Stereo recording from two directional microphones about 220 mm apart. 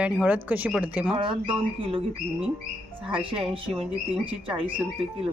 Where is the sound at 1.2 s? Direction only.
20° right (ahead or behind).